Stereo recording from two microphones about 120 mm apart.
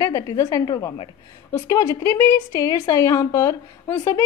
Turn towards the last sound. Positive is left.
turn(degrees=20)  # may be behind; listen again after turning